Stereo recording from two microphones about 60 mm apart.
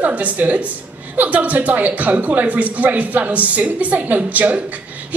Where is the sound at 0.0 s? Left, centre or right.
Right.